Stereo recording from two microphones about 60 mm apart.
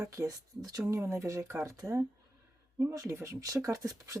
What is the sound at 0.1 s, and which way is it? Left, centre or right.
Speech, right.